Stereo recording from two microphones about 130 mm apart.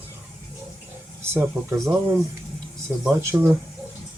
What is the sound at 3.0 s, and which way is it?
Speech, 20° right (ahead or behind).